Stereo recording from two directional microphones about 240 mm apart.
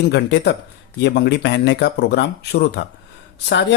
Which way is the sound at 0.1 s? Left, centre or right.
Left.